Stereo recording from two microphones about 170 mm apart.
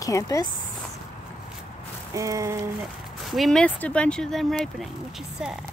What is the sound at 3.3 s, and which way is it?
Speech, centre (ahead or behind).